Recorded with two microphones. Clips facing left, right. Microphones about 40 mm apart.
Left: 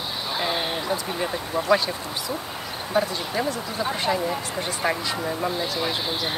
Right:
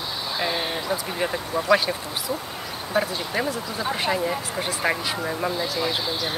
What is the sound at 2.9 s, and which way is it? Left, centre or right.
Speech, centre.